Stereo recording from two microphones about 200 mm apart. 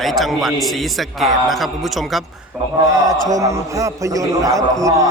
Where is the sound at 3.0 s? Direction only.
15° right (ahead or behind).